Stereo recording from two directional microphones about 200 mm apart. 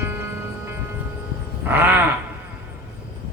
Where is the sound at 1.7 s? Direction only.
10° right (ahead or behind).